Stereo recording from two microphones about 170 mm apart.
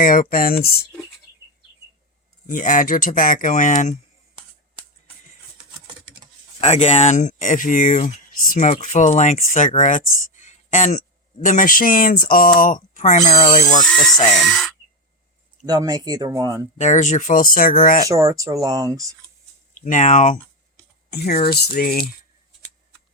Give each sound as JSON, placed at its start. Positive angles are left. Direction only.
{"t": 0.0, "sound": "speech", "side_deg": 55}
{"t": 2.5, "sound": "speech", "side_deg": 50}
{"t": 6.6, "sound": "speech", "side_deg": 40}
{"t": 14.3, "sound": "speech", "side_deg": 0}
{"t": 15.6, "sound": "speech", "side_deg": -25}
{"t": 16.7, "sound": "speech", "side_deg": 45}
{"t": 18.1, "sound": "speech", "side_deg": -20}
{"t": 19.7, "sound": "speech", "side_deg": 50}
{"t": 21.1, "sound": "speech", "side_deg": 70}